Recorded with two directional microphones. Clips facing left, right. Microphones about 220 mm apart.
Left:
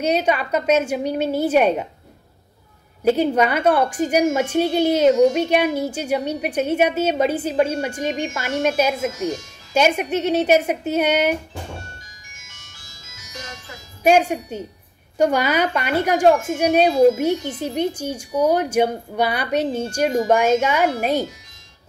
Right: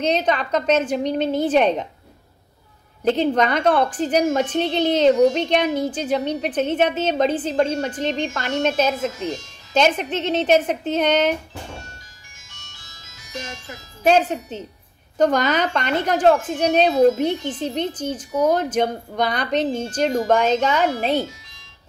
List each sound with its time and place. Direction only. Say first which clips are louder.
0.0 s a woman's voice: left 1 dB; 10° left (ahead or behind)
3.0 s a woman's voice: left 1 dB; 10° left (ahead or behind)
14.0 s a woman's voice: left 1 dB; 10° left (ahead or behind)